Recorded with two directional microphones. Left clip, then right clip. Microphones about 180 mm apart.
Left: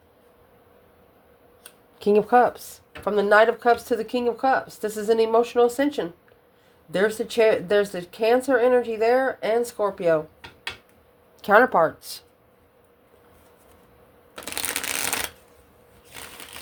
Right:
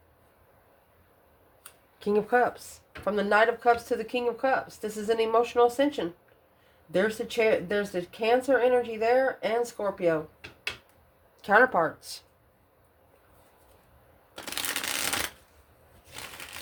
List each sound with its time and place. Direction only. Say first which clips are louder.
2.0 s speech: left 7 dB; 30° left (ahead or behind)
11.4 s speech: left 5 dB; 30° left (ahead or behind)
14.5 s shuffling cards: left 3 dB; 25° left (ahead or behind)